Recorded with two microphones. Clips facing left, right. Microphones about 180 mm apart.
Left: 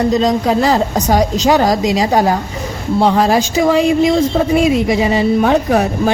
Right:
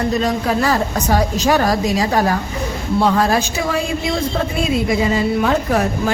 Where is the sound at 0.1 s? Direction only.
20° left (ahead or behind).